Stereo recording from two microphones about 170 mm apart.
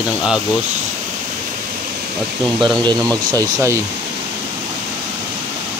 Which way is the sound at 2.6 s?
25° right (ahead or behind).